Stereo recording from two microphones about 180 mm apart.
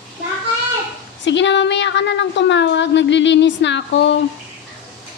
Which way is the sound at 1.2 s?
90° left.